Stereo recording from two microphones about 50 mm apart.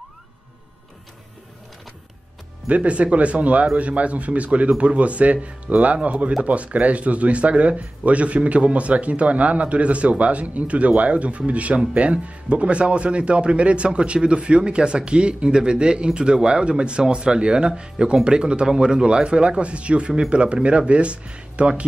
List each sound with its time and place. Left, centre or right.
2.7 s a man's voice: right